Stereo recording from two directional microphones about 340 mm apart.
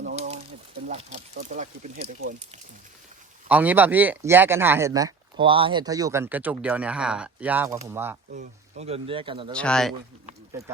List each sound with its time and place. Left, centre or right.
0.9 s speech: right
3.5 s speech: centre
8.3 s speech: right
9.5 s speech: centre